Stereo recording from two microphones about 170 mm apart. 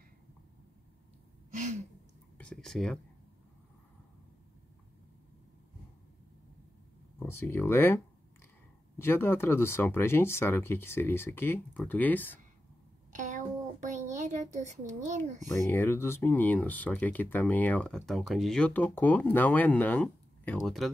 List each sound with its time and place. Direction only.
1.5 s gasp: 45° right (ahead or behind)
2.3 s speech: 5° left (ahead or behind)
7.2 s speech: 15° left (ahead or behind)
13.1 s a sound: 45° right (ahead or behind)
15.5 s speech: 15° left (ahead or behind)